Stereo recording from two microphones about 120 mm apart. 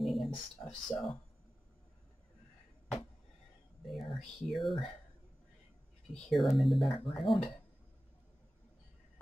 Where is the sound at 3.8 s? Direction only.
Centre (ahead or behind).